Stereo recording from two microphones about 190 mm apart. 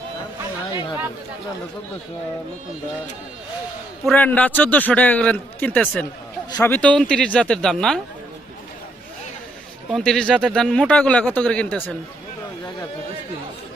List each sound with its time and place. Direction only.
0.7 s speech: 25° left (ahead or behind)
4.0 s a man's voice: 10° left (ahead or behind)
9.9 s speech: 5° left (ahead or behind)